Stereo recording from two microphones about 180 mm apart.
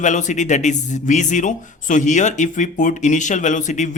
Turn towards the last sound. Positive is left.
turn(degrees=45)  # may be behind; listen again after turning